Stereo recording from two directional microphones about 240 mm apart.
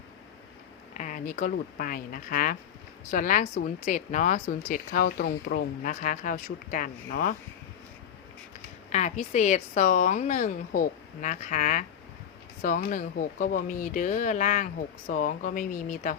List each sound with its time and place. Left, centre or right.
0.9 s a woman's voice: left
8.9 s a woman's voice: left